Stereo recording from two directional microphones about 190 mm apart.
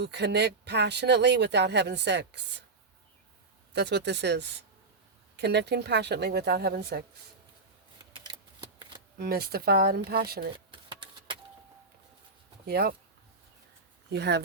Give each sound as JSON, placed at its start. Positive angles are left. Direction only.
{"t": 0.0, "sound": "speech", "side_deg": -65}
{"t": 3.7, "sound": "speech", "side_deg": -65}
{"t": 8.1, "sound": "shuffling cards", "side_deg": -25}
{"t": 9.1, "sound": "speech", "side_deg": -55}
{"t": 10.7, "sound": "a sound", "side_deg": -25}
{"t": 12.6, "sound": "speech", "side_deg": -55}
{"t": 14.1, "sound": "speech", "side_deg": -60}